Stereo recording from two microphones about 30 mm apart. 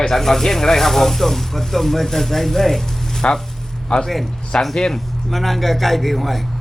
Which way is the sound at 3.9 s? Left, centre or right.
Left.